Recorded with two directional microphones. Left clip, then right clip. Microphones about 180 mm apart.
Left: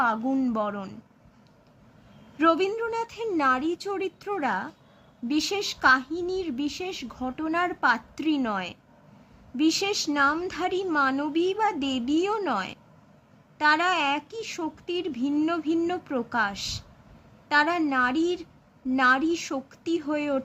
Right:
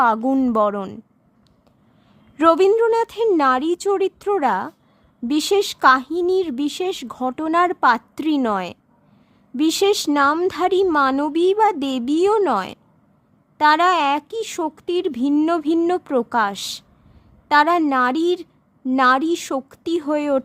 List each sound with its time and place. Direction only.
0.0 s speech: 55° right (ahead or behind)
2.4 s speech: 60° right (ahead or behind)